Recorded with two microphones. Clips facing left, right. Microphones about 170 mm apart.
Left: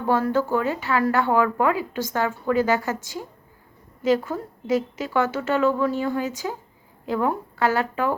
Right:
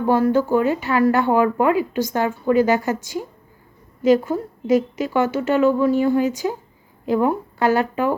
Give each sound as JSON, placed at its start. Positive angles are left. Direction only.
{"t": 0.1, "sound": "a woman's voice", "side_deg": -15}